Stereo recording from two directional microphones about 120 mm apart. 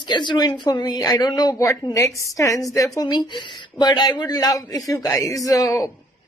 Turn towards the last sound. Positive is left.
turn(degrees=25)  # may be behind; listen again after turning